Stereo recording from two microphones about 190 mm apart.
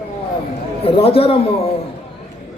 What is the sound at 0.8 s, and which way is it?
Speech, 30° left (ahead or behind).